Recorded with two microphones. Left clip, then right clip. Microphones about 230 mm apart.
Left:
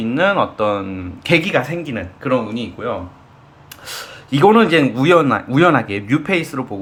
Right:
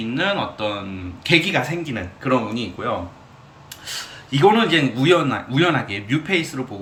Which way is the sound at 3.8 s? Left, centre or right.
Left.